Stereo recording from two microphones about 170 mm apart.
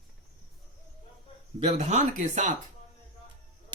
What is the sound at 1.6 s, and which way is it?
Speech, 40° right (ahead or behind).